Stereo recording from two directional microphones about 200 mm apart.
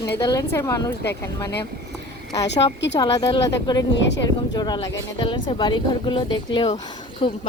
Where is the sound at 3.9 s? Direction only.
60° left (ahead or behind).